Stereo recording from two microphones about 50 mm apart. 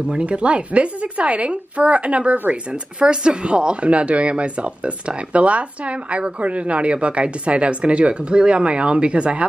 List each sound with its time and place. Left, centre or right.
0.1 s speech: right
3.0 s speech: right